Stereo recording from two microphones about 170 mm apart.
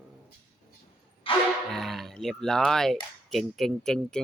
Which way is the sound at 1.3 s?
30° left (ahead or behind).